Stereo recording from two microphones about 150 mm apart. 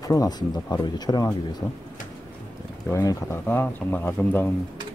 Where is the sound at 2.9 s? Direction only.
20° left (ahead or behind).